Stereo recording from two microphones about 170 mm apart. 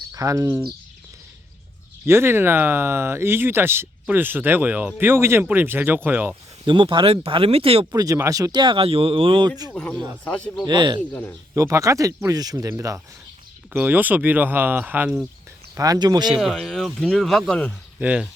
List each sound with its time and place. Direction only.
0.1 s speech: 20° right (ahead or behind)
2.0 s speech: 15° right (ahead or behind)
6.7 s speech: 30° right (ahead or behind)
7.9 s speech: 20° right (ahead or behind)
9.7 s a man's voice: 5° left (ahead or behind)
10.7 s speech: 25° right (ahead or behind)
11.1 s a man's voice: 10° left (ahead or behind)
11.5 s speech: 20° right (ahead or behind)
15.7 s speech: 20° right (ahead or behind)
16.4 s speech: centre (ahead or behind)
18.0 s speech: 5° right (ahead or behind)